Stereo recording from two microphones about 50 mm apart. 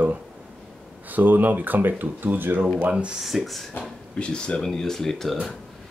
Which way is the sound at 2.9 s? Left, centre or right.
Centre.